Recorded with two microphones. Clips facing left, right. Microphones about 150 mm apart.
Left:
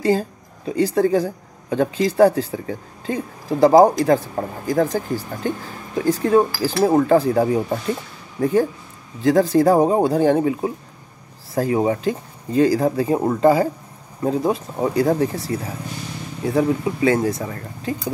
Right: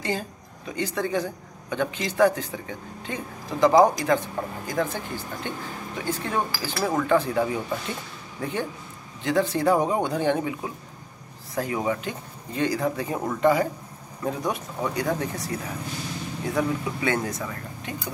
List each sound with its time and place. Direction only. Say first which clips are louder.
0.0 s speech: left 10 dB; 35° left (ahead or behind)